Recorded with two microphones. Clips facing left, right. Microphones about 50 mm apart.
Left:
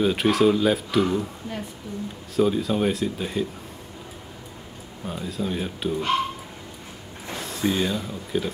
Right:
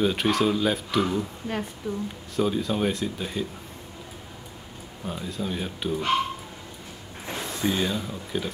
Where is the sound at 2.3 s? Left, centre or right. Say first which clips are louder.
Left 4 dB; centre.